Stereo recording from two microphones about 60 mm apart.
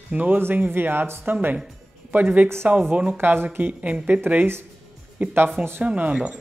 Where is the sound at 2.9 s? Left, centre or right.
Right.